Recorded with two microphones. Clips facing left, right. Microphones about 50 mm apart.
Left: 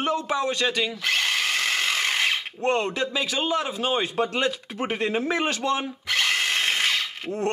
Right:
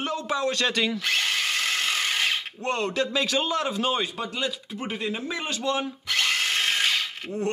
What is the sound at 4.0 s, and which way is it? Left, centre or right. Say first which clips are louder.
Speech: left 5 dB; left.